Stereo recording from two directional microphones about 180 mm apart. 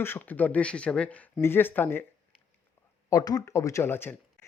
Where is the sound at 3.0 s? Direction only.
20° left (ahead or behind).